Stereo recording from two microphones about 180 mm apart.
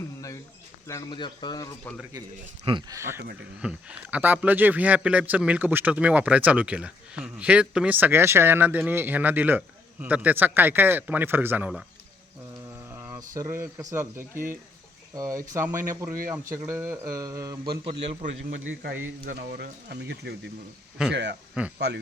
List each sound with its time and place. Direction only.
0.9 s speech: 20° left (ahead or behind)
2.1 s speech: 20° right (ahead or behind)
3.6 s speech: 5° right (ahead or behind)
12.9 s speech: 15° right (ahead or behind)
18.6 s speech: 65° right (ahead or behind)